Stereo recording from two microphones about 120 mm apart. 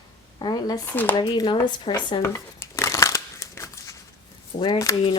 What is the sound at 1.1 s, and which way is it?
Speech, 40° left (ahead or behind).